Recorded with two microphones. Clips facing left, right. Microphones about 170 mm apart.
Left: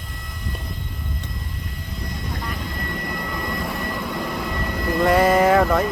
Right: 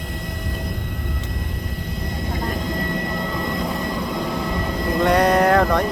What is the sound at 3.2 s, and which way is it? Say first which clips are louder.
Vehicle: right 3 dB; 20° right (ahead or behind).